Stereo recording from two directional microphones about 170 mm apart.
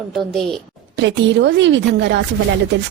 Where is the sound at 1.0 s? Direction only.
90° right.